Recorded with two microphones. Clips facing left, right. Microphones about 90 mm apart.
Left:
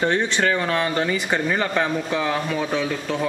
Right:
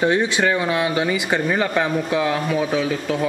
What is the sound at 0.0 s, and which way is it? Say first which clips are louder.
Speech: right 2 dB; 10° right (ahead or behind).